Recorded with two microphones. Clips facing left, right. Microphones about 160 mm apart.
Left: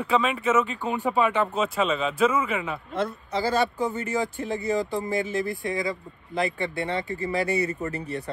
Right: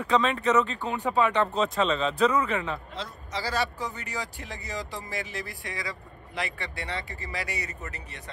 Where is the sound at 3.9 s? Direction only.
40° left (ahead or behind).